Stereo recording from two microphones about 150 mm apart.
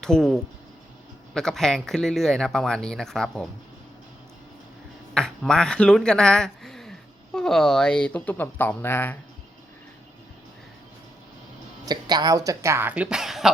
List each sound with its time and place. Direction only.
0.0 s speech: 5° left (ahead or behind)
5.1 s a woman's voice: 5° left (ahead or behind)
11.9 s speech: 25° right (ahead or behind); by 13.5 s centre (ahead or behind)